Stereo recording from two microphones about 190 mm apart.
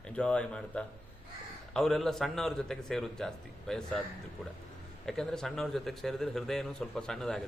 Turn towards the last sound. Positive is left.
turn(degrees=0)  # may be behind; listen again after turning